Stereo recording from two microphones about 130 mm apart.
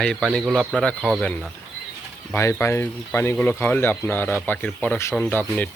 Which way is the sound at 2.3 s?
20° left (ahead or behind).